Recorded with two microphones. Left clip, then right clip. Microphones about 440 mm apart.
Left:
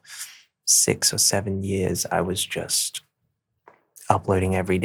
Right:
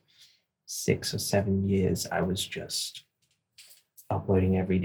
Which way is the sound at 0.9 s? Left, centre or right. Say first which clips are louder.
Left 6 dB; left.